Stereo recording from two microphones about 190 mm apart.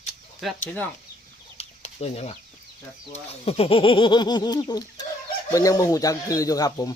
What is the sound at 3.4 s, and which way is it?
Speech, 30° left (ahead or behind).